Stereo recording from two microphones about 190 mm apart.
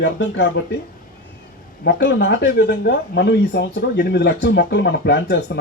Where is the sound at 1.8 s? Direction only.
60° left (ahead or behind).